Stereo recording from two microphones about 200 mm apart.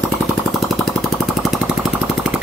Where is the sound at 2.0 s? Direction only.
5° right (ahead or behind).